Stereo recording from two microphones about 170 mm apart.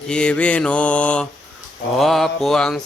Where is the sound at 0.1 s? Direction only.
5° left (ahead or behind).